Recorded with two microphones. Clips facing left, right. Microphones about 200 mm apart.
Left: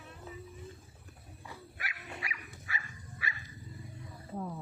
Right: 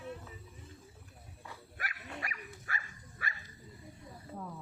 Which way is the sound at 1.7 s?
45° right (ahead or behind).